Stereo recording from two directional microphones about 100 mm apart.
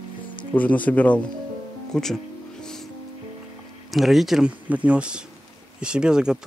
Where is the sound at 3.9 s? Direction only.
Centre (ahead or behind).